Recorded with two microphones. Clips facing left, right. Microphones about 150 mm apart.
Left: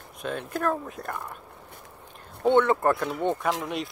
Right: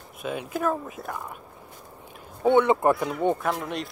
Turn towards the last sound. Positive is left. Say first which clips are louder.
# even
turn(degrees=0)  # may be behind; listen again after turning